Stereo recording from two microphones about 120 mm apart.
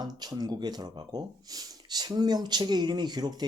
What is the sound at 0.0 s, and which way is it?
Speech, 35° right (ahead or behind).